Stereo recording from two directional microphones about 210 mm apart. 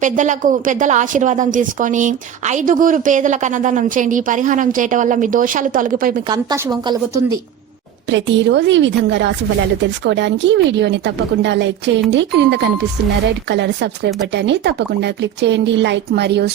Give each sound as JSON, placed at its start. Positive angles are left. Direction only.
{"t": 0.0, "sound": "a woman's voice", "side_deg": -35}
{"t": 6.2, "sound": "a woman's voice", "side_deg": -20}
{"t": 8.1, "sound": "a woman's voice", "side_deg": -60}